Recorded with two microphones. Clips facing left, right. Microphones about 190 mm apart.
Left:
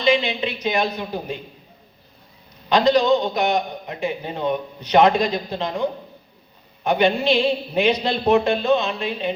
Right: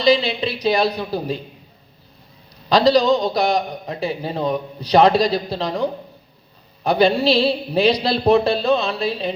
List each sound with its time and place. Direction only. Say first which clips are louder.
0.0 s a man's voice: right 3 dB; 35° right (ahead or behind)
2.6 s a man's voice: right 2 dB; 35° right (ahead or behind)